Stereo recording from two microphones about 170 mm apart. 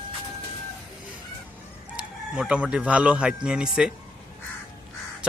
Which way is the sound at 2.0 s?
5° right (ahead or behind).